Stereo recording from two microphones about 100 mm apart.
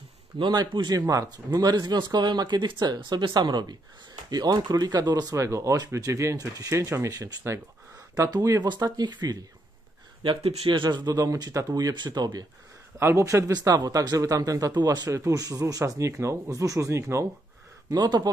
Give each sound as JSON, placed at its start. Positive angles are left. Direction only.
{"t": 0.4, "sound": "speech", "side_deg": -50}
{"t": 5.3, "sound": "speech", "side_deg": -30}
{"t": 10.2, "sound": "speech", "side_deg": -75}
{"t": 10.7, "sound": "speech", "side_deg": -50}
{"t": 13.0, "sound": "speech", "side_deg": -30}
{"t": 13.5, "sound": "speech", "side_deg": -40}
{"t": 17.8, "sound": "speech", "side_deg": -45}